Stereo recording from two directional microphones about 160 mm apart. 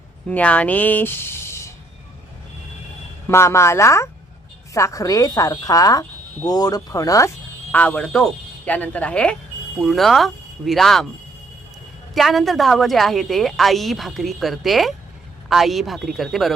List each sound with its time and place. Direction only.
0.3 s speech: 10° left (ahead or behind)
3.2 s speech: 15° left (ahead or behind)
7.7 s speech: 10° left (ahead or behind)
12.1 s a woman's voice: centre (ahead or behind)